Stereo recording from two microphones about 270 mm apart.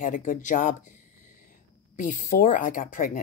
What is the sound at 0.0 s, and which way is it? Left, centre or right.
Speech, left.